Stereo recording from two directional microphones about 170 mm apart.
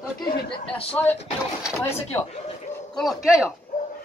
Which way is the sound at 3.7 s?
50° left (ahead or behind).